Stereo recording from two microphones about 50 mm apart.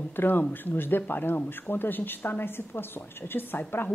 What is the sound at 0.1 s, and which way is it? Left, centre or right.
A woman's voice, left.